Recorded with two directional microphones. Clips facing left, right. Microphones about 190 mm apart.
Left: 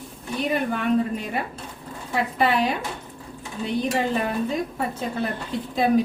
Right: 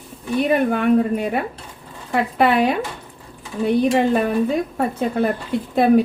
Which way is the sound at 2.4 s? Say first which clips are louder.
Right 5 dB; 60° right (ahead or behind).